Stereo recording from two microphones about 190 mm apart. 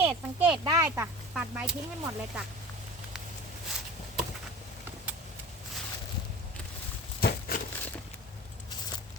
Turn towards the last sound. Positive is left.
turn(degrees=50)  # may be behind; listen again after turning